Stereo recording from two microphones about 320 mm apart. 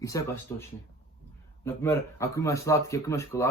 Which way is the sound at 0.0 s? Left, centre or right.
Centre.